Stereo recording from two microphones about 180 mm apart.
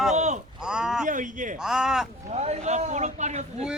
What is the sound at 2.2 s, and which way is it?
Speech, 35° right (ahead or behind).